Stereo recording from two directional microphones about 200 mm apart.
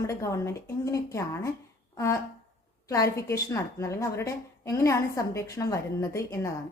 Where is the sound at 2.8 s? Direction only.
15° left (ahead or behind).